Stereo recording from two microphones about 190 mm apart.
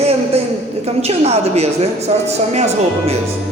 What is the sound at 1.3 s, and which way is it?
A woman's voice, 35° right (ahead or behind).